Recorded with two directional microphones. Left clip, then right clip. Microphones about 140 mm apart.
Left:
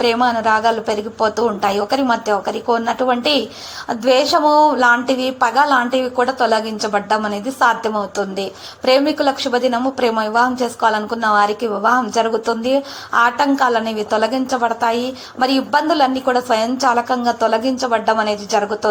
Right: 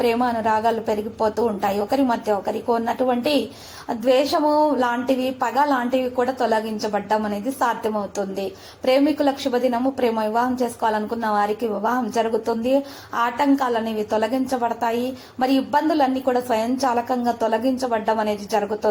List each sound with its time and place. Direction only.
0.0 s a woman's voice: 10° left (ahead or behind)
3.8 s a woman's voice: 25° left (ahead or behind)